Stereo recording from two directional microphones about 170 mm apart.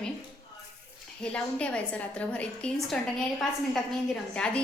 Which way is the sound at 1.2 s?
5° left (ahead or behind).